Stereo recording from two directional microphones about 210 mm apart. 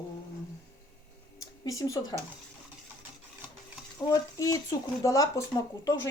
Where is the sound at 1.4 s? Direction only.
15° left (ahead or behind).